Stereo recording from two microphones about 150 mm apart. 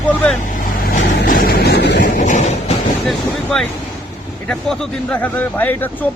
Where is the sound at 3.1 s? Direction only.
5° left (ahead or behind).